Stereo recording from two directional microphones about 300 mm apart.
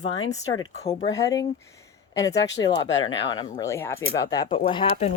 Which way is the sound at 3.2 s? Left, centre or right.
Centre.